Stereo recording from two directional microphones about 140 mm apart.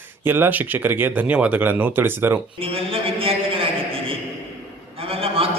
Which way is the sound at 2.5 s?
40° right (ahead or behind).